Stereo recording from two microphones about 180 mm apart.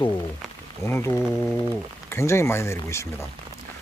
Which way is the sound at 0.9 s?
15° left (ahead or behind).